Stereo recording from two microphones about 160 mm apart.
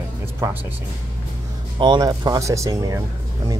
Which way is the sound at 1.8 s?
25° right (ahead or behind).